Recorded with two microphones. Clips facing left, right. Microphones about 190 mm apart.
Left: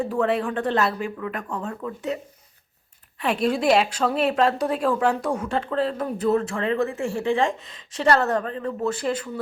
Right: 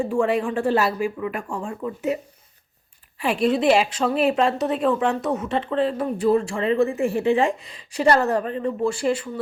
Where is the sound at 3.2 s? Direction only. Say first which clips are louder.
Right 2 dB; 5° right (ahead or behind).